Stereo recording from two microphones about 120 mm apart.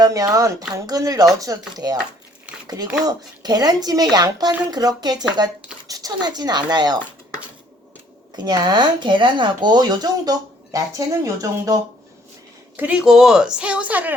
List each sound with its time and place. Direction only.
0.0 s speech: 30° right (ahead or behind)
3.0 s speech: 35° right (ahead or behind)
8.4 s speech: 35° right (ahead or behind)
12.7 s a woman's voice: 10° right (ahead or behind)